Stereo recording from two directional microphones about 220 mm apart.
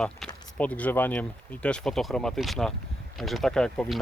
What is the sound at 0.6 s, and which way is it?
Speech, 5° left (ahead or behind).